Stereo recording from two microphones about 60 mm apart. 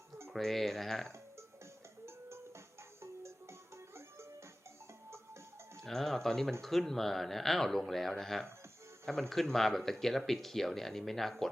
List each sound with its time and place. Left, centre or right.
0.3 s speech: centre
3.0 s music: right
5.8 s speech: centre